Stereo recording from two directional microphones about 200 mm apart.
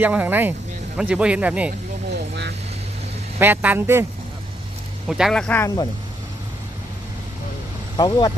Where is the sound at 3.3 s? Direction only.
10° right (ahead or behind).